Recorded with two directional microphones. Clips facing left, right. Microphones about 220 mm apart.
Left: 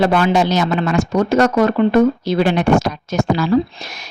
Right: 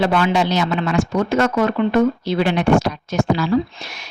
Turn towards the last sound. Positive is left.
turn(degrees=45)  # may be behind; listen again after turning